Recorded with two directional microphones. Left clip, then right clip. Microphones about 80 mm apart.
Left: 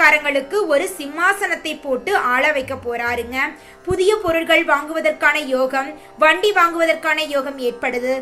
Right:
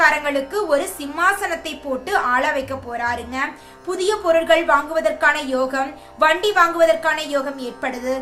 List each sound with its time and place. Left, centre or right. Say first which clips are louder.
0.0 s a woman's voice: left 2 dB; left
3.8 s a woman's voice: left 2 dB; left